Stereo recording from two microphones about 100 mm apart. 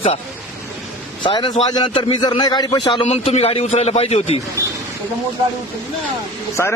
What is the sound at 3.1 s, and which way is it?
A man's voice, 90° left.